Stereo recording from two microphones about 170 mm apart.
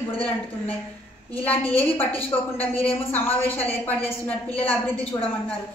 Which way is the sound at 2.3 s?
25° left (ahead or behind).